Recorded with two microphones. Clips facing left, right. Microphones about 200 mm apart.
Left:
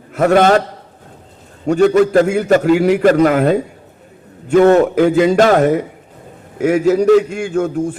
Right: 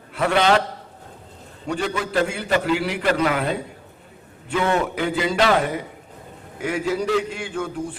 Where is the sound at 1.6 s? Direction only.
45° left (ahead or behind).